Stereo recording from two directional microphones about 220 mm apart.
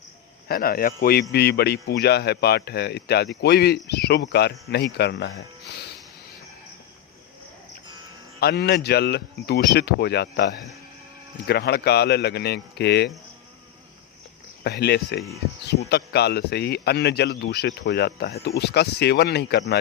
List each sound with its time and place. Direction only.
0.4 s speech: 45° left (ahead or behind)
8.4 s speech: 45° left (ahead or behind)
14.6 s speech: 50° left (ahead or behind)